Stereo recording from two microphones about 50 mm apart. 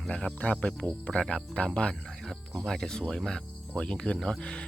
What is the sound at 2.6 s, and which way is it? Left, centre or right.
Speech, centre.